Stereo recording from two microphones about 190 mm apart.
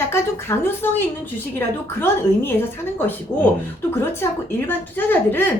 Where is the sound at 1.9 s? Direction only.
10° left (ahead or behind).